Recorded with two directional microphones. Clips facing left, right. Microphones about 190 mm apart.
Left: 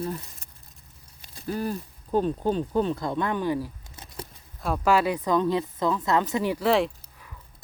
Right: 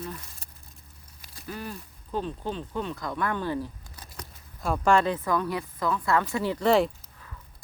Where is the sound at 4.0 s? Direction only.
25° left (ahead or behind).